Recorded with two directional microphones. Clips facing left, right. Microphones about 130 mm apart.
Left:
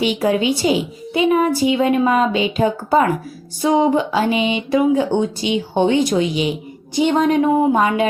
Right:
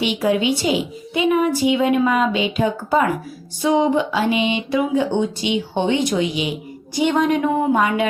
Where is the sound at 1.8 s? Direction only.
35° left (ahead or behind).